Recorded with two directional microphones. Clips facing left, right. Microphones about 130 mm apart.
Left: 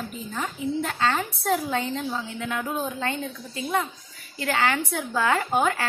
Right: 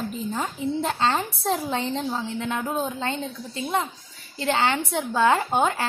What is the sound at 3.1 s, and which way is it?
A woman's voice, 30° right (ahead or behind).